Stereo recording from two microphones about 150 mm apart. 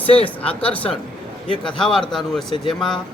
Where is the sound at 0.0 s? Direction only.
40° left (ahead or behind).